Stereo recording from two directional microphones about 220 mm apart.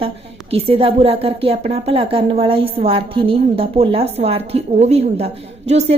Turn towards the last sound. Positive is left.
turn(degrees=-30)  # may be behind; listen again after turning